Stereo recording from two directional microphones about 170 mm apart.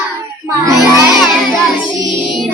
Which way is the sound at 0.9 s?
5° right (ahead or behind).